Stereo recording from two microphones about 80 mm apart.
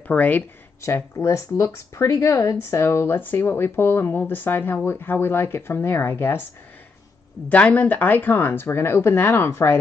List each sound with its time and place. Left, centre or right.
0.1 s speech: centre
0.7 s speech: left
7.4 s speech: centre